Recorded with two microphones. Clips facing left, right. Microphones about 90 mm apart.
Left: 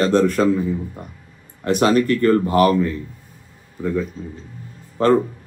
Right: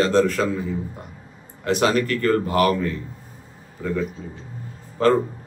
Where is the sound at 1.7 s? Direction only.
40° left (ahead or behind).